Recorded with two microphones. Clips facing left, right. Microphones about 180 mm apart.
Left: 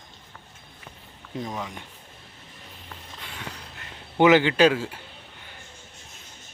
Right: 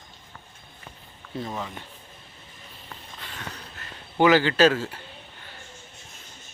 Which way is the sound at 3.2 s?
15° left (ahead or behind).